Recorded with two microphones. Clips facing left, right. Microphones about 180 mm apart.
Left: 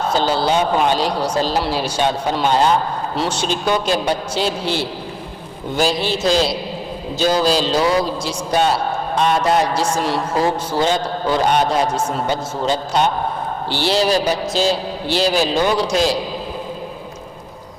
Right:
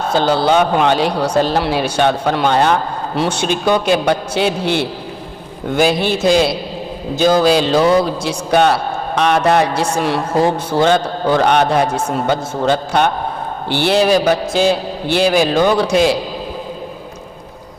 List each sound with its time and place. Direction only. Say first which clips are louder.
0.1 s a man's voice: right 5 dB; 60° right (ahead or behind)
7.2 s a man's voice: right 4 dB; 55° right (ahead or behind)